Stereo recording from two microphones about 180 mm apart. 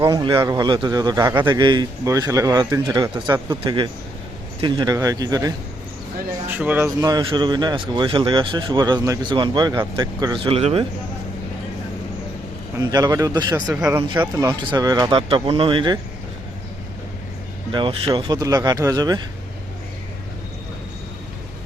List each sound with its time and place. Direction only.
0.0 s speech: 25° right (ahead or behind)
6.5 s speech: 10° right (ahead or behind); by 10.8 s 35° right (ahead or behind)
12.8 s speech: 20° right (ahead or behind)
17.7 s speech: 30° right (ahead or behind)